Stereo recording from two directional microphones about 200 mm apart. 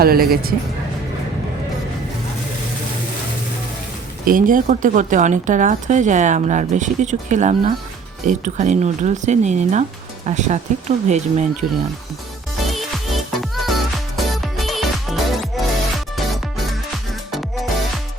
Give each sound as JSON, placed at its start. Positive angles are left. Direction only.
{"t": 0.0, "sound": "a woman's voice", "side_deg": -50}
{"t": 4.3, "sound": "speech", "side_deg": -45}
{"t": 12.7, "sound": "music", "side_deg": 0}